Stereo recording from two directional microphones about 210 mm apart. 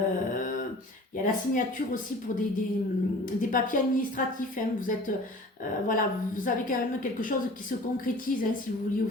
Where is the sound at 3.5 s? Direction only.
40° left (ahead or behind).